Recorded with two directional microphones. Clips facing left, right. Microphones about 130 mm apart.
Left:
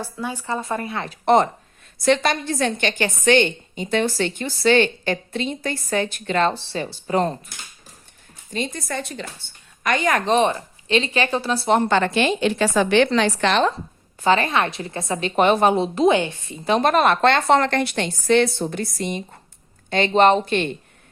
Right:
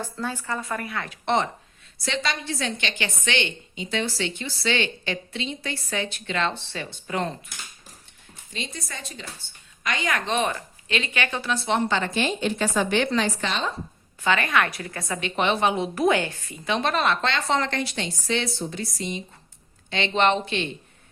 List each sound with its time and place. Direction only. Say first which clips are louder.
0.0 s speech: left 2 dB; 15° left (ahead or behind)
0.4 s a woman's voice: left 4 dB; 25° left (ahead or behind)
8.5 s speech: left 9 dB; 50° left (ahead or behind)
9.8 s speech: left 7 dB; 50° left (ahead or behind); by 13.7 s 70° left (ahead or behind)
14.2 s a woman's voice: left 4 dB; 35° left (ahead or behind)
15.4 s a woman's voice: left 6 dB; 45° left (ahead or behind)
15.8 s a woman's voice: left 4 dB; 25° left (ahead or behind)
16.6 s speech: left 6 dB; 45° left (ahead or behind)
19.9 s a woman's voice: left 6 dB; 40° left (ahead or behind)